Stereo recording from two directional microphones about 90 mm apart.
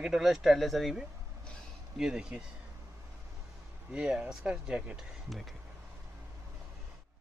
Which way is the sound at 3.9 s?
10° right (ahead or behind).